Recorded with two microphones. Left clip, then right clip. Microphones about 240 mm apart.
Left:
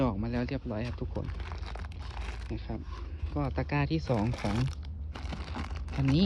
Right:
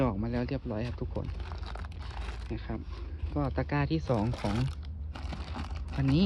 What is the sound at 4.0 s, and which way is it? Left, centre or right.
Speech, right.